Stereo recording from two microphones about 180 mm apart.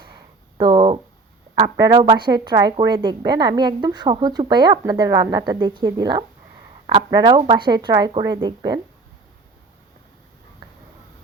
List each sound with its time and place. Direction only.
0.6 s speech: 25° right (ahead or behind)